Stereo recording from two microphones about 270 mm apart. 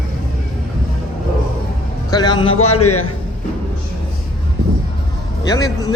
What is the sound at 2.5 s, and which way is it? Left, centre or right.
Speech, left.